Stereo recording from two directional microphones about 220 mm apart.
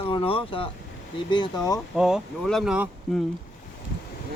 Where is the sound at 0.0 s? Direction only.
25° left (ahead or behind).